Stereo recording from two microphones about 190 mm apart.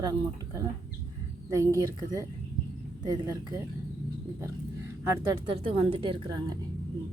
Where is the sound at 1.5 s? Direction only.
15° right (ahead or behind).